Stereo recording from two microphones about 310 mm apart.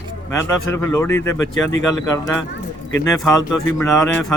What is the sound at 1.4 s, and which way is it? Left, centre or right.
Speech, left.